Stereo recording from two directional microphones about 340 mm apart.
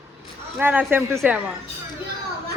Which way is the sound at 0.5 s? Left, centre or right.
Centre.